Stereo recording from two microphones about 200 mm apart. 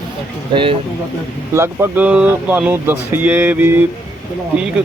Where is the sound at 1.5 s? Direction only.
10° right (ahead or behind).